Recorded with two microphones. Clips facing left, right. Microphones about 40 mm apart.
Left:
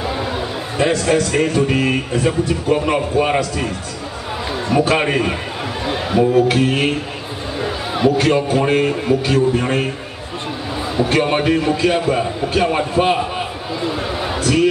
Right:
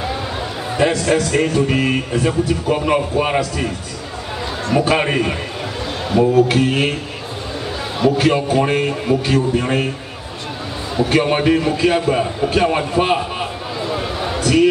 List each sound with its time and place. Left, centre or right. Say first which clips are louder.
0.7 s speech: even; centre
4.8 s speech: even; centre
5.9 s a sound: even; centre
6.5 s speech: even; centre
8.2 s speech: even; centre
11.0 s speech: right 1 dB; centre
14.2 s a sound: right 2 dB; centre